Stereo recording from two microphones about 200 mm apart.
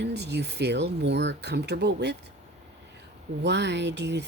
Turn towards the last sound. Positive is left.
turn(degrees=-60)  # may be behind; listen again after turning